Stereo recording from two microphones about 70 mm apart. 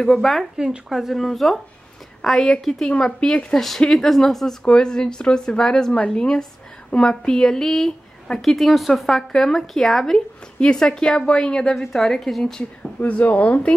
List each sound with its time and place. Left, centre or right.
0.0 s speech: centre
13.0 s speech: left